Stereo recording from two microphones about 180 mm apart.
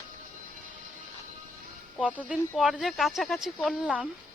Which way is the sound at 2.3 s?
Centre (ahead or behind).